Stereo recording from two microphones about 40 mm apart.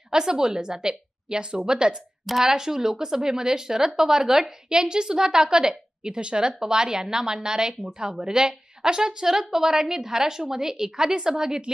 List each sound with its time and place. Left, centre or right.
0.1 s a woman's voice: centre